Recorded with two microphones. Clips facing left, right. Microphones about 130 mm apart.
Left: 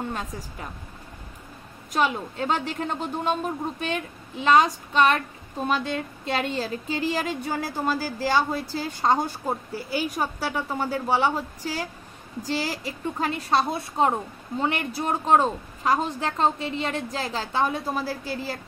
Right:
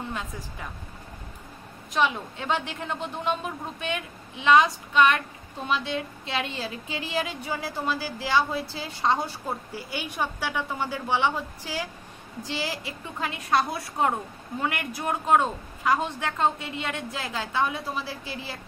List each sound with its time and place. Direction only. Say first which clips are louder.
2.0 s a woman's voice: left 1 dB; 40° left (ahead or behind)